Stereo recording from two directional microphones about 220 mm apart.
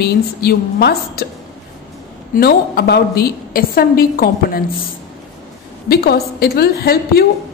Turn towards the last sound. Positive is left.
turn(degrees=45)  # may be behind; listen again after turning